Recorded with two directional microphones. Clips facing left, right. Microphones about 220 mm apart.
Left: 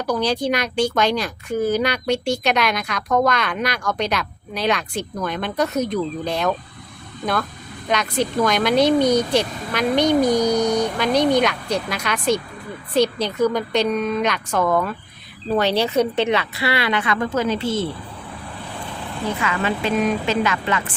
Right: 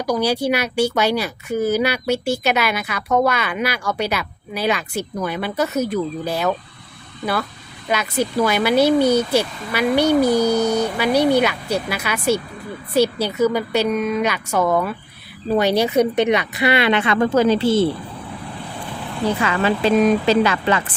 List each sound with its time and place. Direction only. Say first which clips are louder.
0.0 s a woman's voice: right 2 dB; 10° right (ahead or behind)
7.9 s a woman's voice: even; 5° right (ahead or behind); by 17.8 s 35° right (ahead or behind)
19.4 s speech: right 3 dB; 35° right (ahead or behind)